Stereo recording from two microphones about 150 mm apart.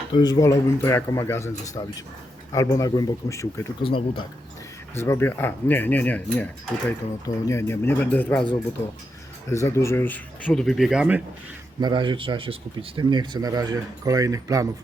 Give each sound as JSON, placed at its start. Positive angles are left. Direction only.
{"t": 0.1, "sound": "speech", "side_deg": 25}
{"t": 4.9, "sound": "speech", "side_deg": 15}
{"t": 9.5, "sound": "speech", "side_deg": 20}
{"t": 11.8, "sound": "speech", "side_deg": -30}